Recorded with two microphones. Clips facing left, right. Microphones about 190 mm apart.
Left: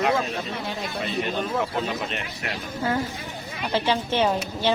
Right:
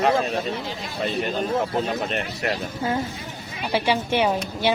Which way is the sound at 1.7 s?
45° right (ahead or behind).